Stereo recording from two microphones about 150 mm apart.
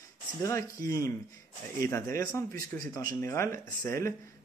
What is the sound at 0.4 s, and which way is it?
Speech, 20° left (ahead or behind).